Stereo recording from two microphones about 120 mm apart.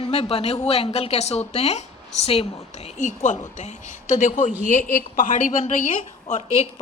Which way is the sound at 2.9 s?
90° left.